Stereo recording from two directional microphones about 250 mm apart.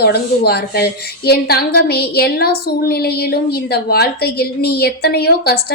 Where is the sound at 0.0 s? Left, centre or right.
Left.